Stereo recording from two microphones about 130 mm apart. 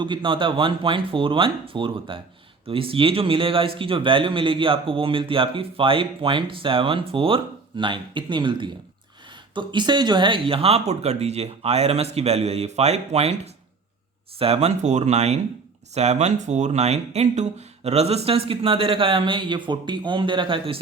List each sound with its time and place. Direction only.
0.0 s speech: 40° right (ahead or behind)